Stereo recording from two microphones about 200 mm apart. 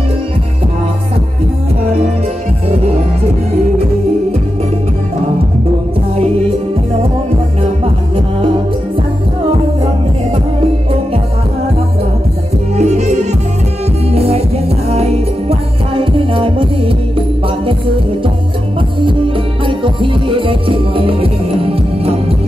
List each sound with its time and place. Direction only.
6.1 s music: 30° right (ahead or behind)
12.7 s music: 35° right (ahead or behind)